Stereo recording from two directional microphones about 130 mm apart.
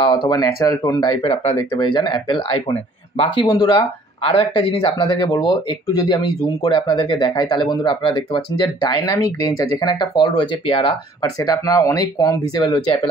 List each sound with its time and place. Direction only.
0.0 s speech: 40° left (ahead or behind)
0.3 s speech: 25° left (ahead or behind)
1.8 s speech: 40° left (ahead or behind)
3.4 s speech: 30° left (ahead or behind)
4.2 s speech: 50° left (ahead or behind); by 9.7 s 25° left (ahead or behind)
9.8 s speech: 35° left (ahead or behind)
11.2 s speech: 25° left (ahead or behind)